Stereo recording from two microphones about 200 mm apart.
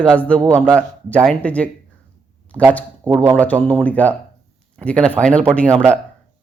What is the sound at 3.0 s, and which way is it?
Speech, 20° right (ahead or behind).